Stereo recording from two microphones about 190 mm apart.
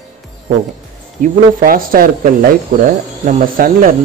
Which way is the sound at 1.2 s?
50° right (ahead or behind).